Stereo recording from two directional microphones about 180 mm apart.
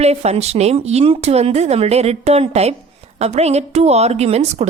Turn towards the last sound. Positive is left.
turn(degrees=-40)  # may be behind; listen again after turning